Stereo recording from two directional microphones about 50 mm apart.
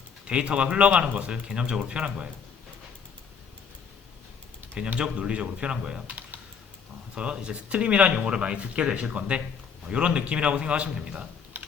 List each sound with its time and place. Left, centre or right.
0.3 s speech: right
4.9 s speech: right
7.2 s speech: right